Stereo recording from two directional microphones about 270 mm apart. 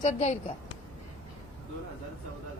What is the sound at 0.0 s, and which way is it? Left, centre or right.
Speech, left.